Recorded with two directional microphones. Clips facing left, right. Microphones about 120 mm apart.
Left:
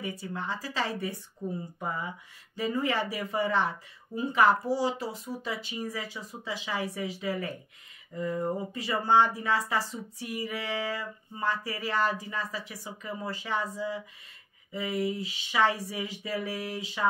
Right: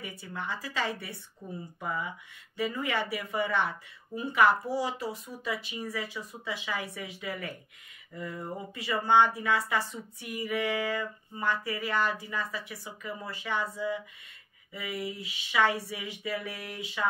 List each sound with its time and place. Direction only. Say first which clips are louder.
0.0 s speech: left 3 dB; 30° left (ahead or behind)
5.9 s speech: right 1 dB; 30° left (ahead or behind)
8.1 s a sound: left 7 dB; 20° left (ahead or behind)
8.4 s speech: left 7 dB; 35° left (ahead or behind)